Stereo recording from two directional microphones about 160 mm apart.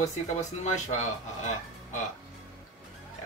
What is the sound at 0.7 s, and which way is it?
Speech, 45° left (ahead or behind).